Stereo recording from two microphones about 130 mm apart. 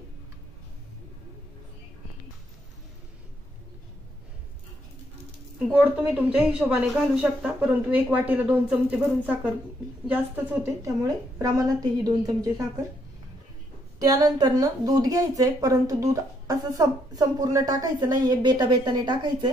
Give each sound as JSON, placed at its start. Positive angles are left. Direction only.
{"t": 5.7, "sound": "a woman's voice", "side_deg": -10}
{"t": 13.9, "sound": "speech", "side_deg": -30}